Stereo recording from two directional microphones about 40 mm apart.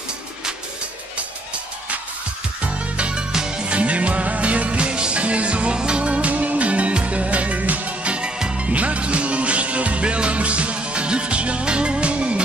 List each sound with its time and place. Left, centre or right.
2.6 s music: right
3.3 s music: centre
3.7 s music: right